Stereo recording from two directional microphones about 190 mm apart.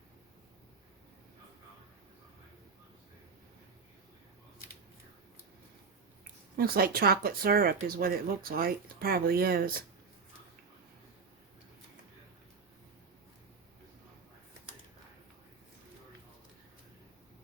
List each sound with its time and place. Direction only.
6.6 s speech: 50° right (ahead or behind)